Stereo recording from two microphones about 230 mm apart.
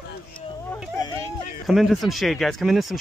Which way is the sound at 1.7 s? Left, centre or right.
Centre.